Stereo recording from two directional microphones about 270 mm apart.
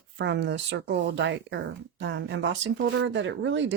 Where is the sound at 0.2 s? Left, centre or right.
Right.